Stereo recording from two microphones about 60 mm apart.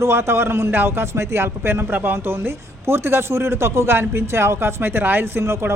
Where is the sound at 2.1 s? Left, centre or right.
Right.